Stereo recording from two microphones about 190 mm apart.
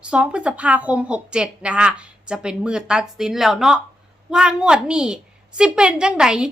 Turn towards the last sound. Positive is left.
turn(degrees=-5)  # may be behind; listen again after turning